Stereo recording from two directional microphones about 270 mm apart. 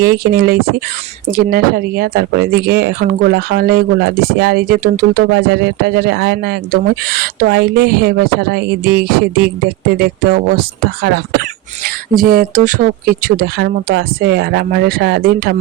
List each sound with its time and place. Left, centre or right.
0.0 s speech: right